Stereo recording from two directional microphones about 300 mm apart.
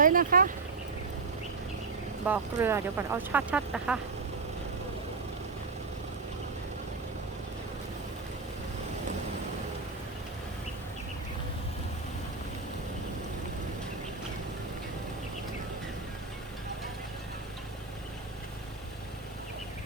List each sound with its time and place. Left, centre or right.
0.0 s vehicle: right
2.2 s speech: centre